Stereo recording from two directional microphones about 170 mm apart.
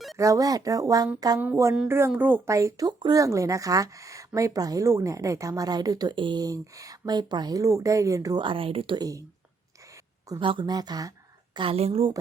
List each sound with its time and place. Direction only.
0.2 s a woman's voice: 20° right (ahead or behind)
10.2 s a woman's voice: 25° right (ahead or behind)